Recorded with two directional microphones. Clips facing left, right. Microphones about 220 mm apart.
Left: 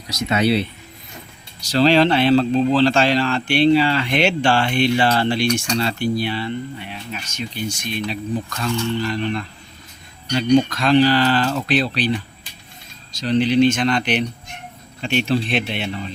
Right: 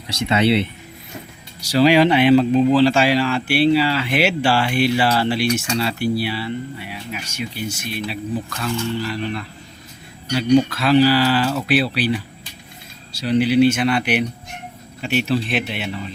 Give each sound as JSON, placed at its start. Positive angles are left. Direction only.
{"t": 0.1, "sound": "speech", "side_deg": -30}
{"t": 1.6, "sound": "speech", "side_deg": -10}